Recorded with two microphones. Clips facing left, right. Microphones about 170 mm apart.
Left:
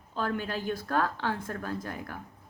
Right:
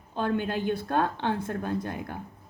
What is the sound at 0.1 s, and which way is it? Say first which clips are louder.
A woman's voice: right 4 dB; 20° right (ahead or behind).